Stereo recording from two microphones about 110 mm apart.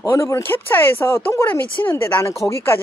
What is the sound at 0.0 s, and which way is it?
Speech, 25° left (ahead or behind).